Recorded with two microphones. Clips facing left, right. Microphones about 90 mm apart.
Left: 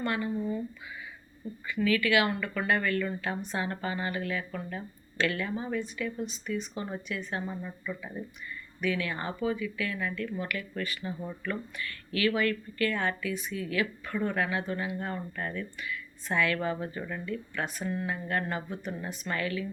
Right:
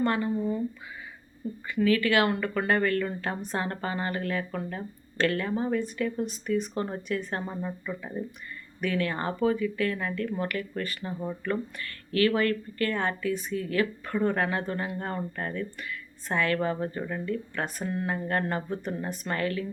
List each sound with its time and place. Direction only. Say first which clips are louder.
0.0 s speech: right 4 dB; 35° right (ahead or behind)
1.6 s speech: right 3 dB; 40° right (ahead or behind)
7.4 s speech: right 3 dB; 30° right (ahead or behind)
8.8 s speech: right 3 dB; 45° right (ahead or behind)